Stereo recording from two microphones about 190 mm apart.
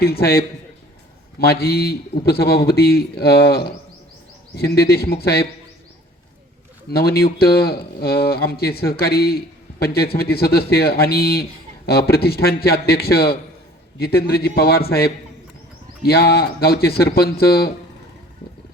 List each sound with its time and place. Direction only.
0.0 s a man's voice: 55° left (ahead or behind)
6.9 s a man's voice: 55° left (ahead or behind)